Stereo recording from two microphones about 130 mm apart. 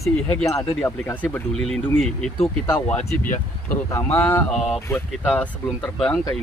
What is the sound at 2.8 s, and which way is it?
Speech, 10° left (ahead or behind).